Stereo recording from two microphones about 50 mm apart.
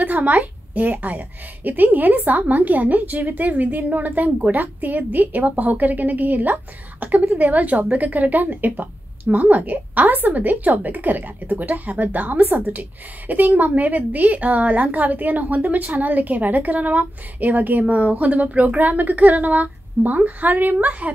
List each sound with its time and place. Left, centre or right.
0.0 s a woman's voice: right
12.5 s a woman's voice: right